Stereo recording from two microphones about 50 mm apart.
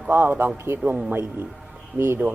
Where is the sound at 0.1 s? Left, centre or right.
Right.